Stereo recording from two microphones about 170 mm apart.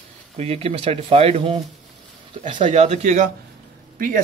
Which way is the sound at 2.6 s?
35° right (ahead or behind).